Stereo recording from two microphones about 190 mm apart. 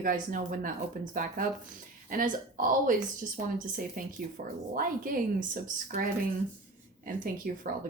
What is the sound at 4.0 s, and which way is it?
Speech, 45° right (ahead or behind).